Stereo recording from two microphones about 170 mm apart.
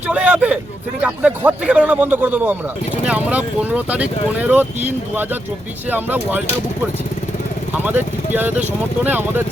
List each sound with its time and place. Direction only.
0.1 s speech: 10° right (ahead or behind)
7.9 s speech: 10° right (ahead or behind)